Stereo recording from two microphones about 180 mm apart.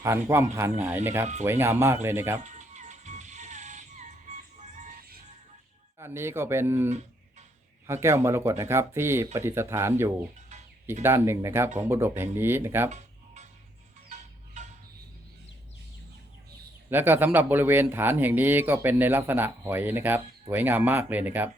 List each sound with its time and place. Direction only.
0.0 s speech: 15° right (ahead or behind)
2.4 s music: 40° right (ahead or behind)
4.8 s music: 55° right (ahead or behind)
6.0 s speech: 15° right (ahead or behind)
10.5 s music: 40° right (ahead or behind)
11.0 s speech: 15° right (ahead or behind)
12.9 s music: 40° right (ahead or behind)
16.9 s speech: 10° right (ahead or behind)